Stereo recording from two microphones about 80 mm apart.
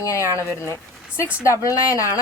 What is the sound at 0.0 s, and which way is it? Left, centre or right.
A woman's voice, left.